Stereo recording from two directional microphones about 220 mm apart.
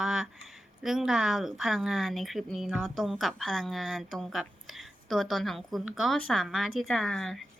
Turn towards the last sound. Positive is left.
turn(degrees=0)  # may be behind; listen again after turning